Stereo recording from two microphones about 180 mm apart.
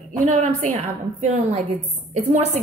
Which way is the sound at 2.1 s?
40° right (ahead or behind).